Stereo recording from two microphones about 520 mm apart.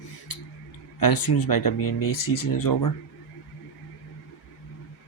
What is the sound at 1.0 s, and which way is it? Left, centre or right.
Speech, left.